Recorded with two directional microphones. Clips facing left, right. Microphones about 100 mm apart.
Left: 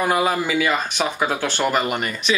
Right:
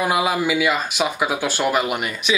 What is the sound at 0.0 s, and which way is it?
Speech, 5° right (ahead or behind).